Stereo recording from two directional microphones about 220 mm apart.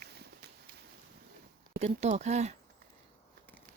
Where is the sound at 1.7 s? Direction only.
30° right (ahead or behind).